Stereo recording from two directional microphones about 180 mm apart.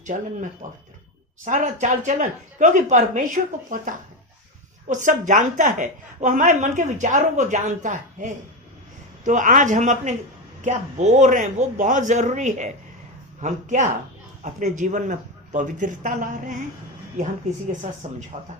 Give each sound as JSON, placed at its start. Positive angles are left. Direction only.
{"t": 0.1, "sound": "a woman's voice", "side_deg": -40}
{"t": 18.3, "sound": "speech", "side_deg": -40}